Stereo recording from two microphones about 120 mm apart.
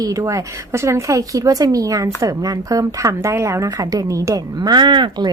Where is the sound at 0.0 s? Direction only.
30° right (ahead or behind).